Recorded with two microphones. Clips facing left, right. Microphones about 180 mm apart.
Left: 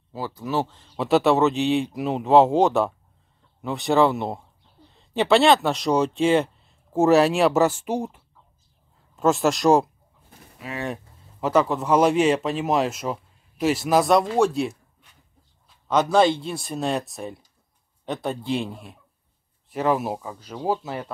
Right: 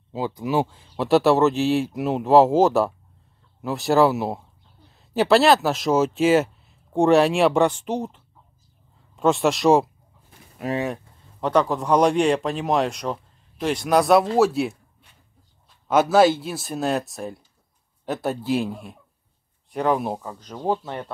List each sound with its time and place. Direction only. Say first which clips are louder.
0.1 s speech: right 3 dB; 15° right (ahead or behind); by 9.8 s centre (ahead or behind)
10.6 s speech: right 9 dB; 45° right (ahead or behind)
11.4 s speech: even; 5° left (ahead or behind)
15.9 s speech: right 2 dB; 5° right (ahead or behind)